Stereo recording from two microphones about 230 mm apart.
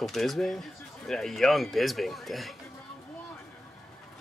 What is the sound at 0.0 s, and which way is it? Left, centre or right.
Speech, centre.